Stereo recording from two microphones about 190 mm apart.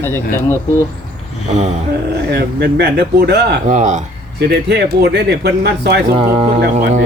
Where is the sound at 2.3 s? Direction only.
60° right (ahead or behind).